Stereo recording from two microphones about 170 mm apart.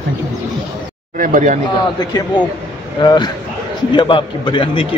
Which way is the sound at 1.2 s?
50° right (ahead or behind).